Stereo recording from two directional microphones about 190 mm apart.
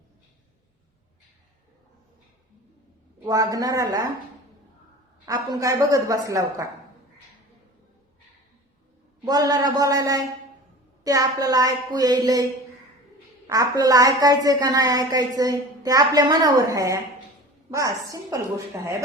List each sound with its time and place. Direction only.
3.2 s a woman's voice: 20° right (ahead or behind)
5.2 s a woman's voice: 20° right (ahead or behind)
9.2 s a woman's voice: 20° right (ahead or behind)
13.5 s a woman's voice: 20° right (ahead or behind)